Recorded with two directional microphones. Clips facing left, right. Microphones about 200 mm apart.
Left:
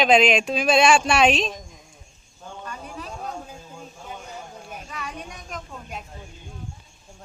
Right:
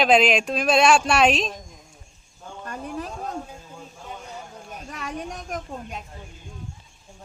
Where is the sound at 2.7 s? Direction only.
50° right (ahead or behind).